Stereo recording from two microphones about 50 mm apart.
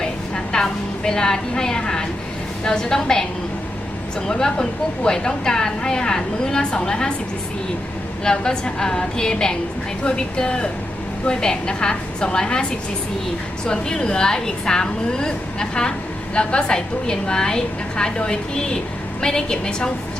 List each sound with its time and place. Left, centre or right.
0.0 s a sound: centre
2.6 s a woman's voice: centre
4.3 s a woman's voice: centre
8.2 s a woman's voice: centre
13.7 s a woman's voice: centre